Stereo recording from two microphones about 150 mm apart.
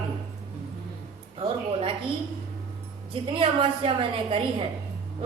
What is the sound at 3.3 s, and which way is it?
A woman's voice, 35° right (ahead or behind).